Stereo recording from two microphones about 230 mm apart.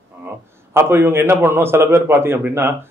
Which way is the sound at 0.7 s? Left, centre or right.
Centre.